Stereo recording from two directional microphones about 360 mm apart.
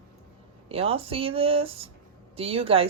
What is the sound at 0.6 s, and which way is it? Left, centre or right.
Speech, centre.